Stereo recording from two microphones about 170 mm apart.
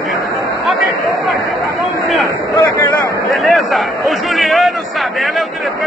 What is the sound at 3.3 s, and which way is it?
A man's voice, centre (ahead or behind).